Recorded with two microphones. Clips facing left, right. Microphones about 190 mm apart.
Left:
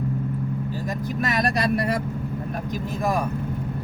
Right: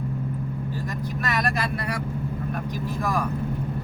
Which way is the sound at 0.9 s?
20° left (ahead or behind).